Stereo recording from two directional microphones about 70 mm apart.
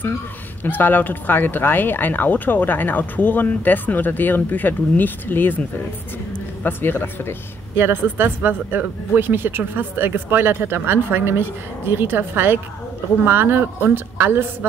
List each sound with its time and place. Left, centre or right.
0.7 s speech: left
6.6 s speech: left
7.7 s speech: right